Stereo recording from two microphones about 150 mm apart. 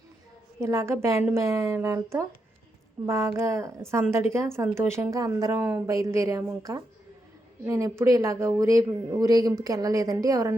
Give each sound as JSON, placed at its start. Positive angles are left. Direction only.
{"t": 0.6, "sound": "a man's voice", "side_deg": -20}